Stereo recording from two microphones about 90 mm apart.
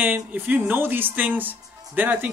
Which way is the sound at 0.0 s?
20° right (ahead or behind).